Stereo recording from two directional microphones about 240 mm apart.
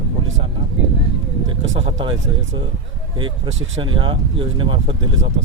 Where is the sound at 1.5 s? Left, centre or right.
Right.